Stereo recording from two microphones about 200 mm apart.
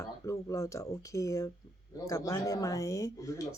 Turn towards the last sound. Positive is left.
turn(degrees=15)  # may be behind; listen again after turning